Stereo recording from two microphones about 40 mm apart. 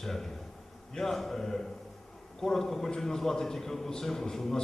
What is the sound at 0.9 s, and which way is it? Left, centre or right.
A man's voice, centre.